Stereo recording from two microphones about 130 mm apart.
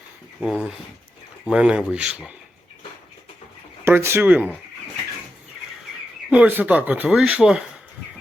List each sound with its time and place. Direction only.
0.3 s speech: 5° right (ahead or behind)
3.8 s speech: 20° right (ahead or behind)
6.3 s speech: 10° right (ahead or behind)